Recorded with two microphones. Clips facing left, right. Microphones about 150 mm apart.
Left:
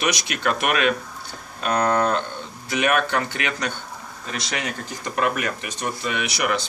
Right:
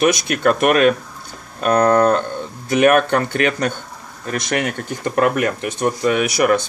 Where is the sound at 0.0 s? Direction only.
50° right (ahead or behind).